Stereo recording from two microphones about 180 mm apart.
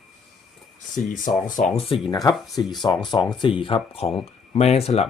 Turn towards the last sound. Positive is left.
turn(degrees=35)  # may be behind; listen again after turning